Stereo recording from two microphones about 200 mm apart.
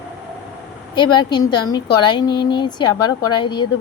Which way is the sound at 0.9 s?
20° left (ahead or behind).